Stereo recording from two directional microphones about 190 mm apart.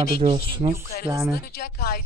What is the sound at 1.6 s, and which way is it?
Speech, 55° left (ahead or behind).